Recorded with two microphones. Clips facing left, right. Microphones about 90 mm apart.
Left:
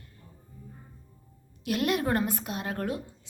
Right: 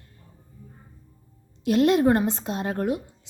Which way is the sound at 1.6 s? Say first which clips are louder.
Right 9 dB; 30° right (ahead or behind).